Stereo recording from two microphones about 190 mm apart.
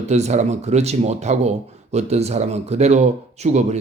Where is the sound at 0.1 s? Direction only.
35° right (ahead or behind).